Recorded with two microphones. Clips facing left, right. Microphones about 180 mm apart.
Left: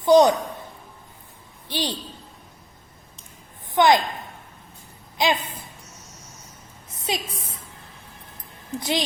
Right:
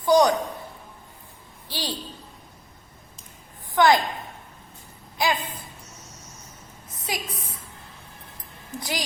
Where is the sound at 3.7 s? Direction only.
20° left (ahead or behind).